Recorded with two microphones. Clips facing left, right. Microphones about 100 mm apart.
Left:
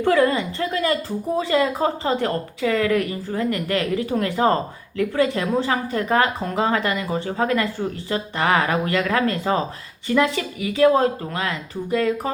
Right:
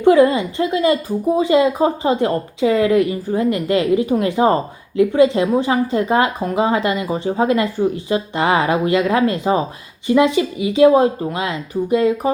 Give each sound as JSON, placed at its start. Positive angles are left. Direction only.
{"t": 0.0, "sound": "a woman's voice", "side_deg": -15}